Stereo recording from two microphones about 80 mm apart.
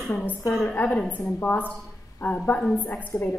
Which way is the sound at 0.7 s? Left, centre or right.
Centre.